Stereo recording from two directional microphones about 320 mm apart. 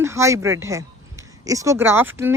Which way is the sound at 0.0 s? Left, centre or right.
Centre.